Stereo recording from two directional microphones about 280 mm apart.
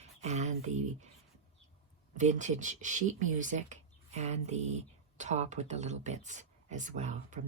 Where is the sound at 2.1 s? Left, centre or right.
Right.